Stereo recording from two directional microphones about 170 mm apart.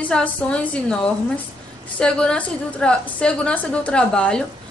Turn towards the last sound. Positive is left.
turn(degrees=5)  # may be behind; listen again after turning